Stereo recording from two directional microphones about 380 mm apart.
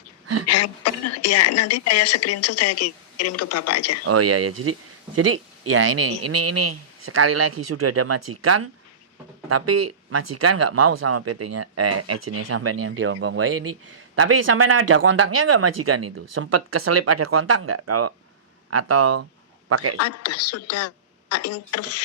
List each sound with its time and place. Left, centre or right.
0.4 s speech: left
4.0 s a man's voice: right
20.0 s speech: left